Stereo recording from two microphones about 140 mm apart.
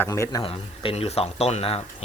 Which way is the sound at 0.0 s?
20° left (ahead or behind).